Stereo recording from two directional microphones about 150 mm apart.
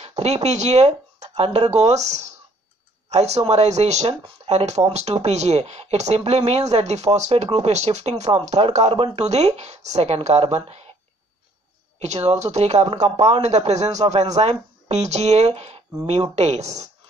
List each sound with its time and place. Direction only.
0.0 s speech: 45° right (ahead or behind)
12.0 s speech: 45° right (ahead or behind)